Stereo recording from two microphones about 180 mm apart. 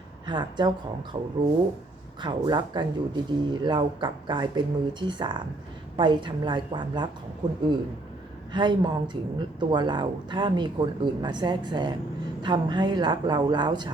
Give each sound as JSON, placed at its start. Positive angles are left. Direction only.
{"t": 0.3, "sound": "speech", "side_deg": -25}